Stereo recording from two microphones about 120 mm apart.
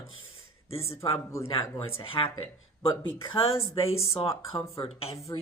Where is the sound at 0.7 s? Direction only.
55° left (ahead or behind).